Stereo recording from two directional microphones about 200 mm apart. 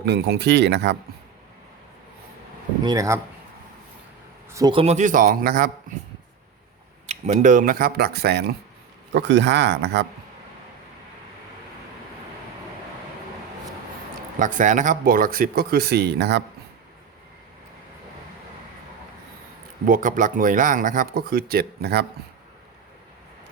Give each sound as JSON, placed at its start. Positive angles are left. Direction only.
{"t": 0.0, "sound": "speech", "side_deg": -55}
{"t": 2.8, "sound": "speech", "side_deg": -15}
{"t": 4.4, "sound": "a man's voice", "side_deg": -15}
{"t": 7.1, "sound": "speech", "side_deg": -40}
{"t": 14.3, "sound": "speech", "side_deg": -40}
{"t": 19.8, "sound": "speech", "side_deg": -40}